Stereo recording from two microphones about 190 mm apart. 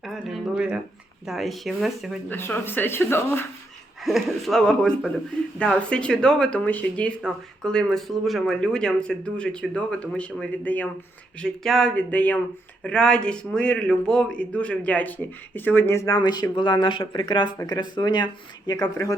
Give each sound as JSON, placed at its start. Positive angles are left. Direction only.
{"t": 0.0, "sound": "speech", "side_deg": 0}
{"t": 2.3, "sound": "a man's voice", "side_deg": 10}
{"t": 4.0, "sound": "a man's voice", "side_deg": 0}